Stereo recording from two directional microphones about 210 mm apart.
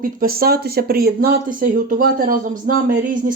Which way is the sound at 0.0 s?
45° right (ahead or behind).